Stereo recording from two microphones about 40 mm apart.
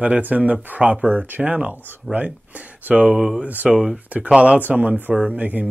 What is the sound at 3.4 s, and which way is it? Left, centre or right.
Speech, right.